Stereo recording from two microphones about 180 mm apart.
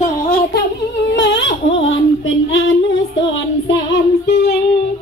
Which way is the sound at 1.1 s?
80° left.